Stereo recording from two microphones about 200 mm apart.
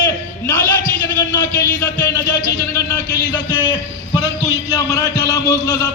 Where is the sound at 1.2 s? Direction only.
15° left (ahead or behind).